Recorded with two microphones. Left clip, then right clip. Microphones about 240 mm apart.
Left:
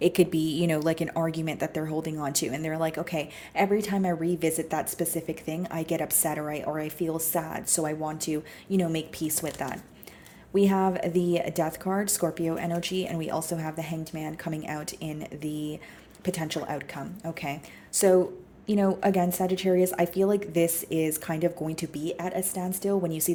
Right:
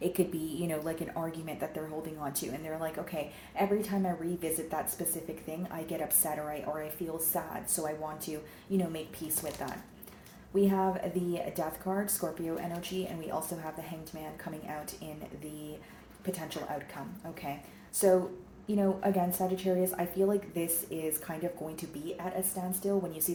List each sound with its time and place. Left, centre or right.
0.0 s a woman's voice: left
16.2 s a woman's voice: left
18.7 s a woman's voice: left